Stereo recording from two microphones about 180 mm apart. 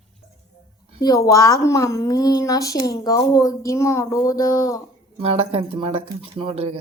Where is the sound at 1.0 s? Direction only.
20° left (ahead or behind).